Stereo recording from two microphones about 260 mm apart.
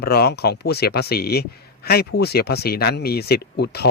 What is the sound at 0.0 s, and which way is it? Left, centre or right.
Speech, left.